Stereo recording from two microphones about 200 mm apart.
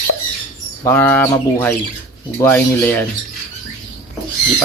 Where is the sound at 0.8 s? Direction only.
10° left (ahead or behind).